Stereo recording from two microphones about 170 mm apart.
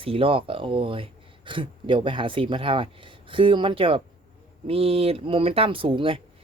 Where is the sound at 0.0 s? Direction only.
30° right (ahead or behind).